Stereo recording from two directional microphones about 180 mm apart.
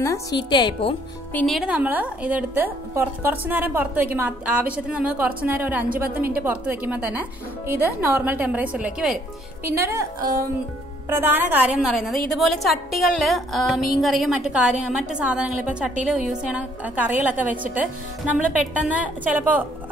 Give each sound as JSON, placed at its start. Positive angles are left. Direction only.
{"t": 0.0, "sound": "a woman's voice", "side_deg": 20}
{"t": 1.3, "sound": "a woman's voice", "side_deg": 0}
{"t": 18.9, "sound": "a woman's voice", "side_deg": -10}